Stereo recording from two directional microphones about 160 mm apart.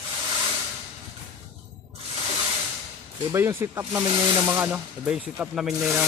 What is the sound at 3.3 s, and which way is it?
Speech, 15° right (ahead or behind).